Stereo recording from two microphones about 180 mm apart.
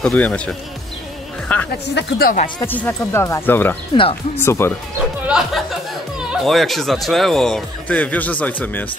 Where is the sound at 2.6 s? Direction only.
10° left (ahead or behind).